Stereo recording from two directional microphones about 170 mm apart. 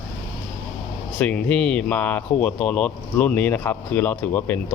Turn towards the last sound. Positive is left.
turn(degrees=10)  # may be behind; listen again after turning